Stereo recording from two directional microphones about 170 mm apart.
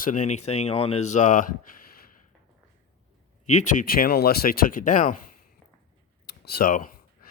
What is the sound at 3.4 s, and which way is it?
Speech, 45° left (ahead or behind).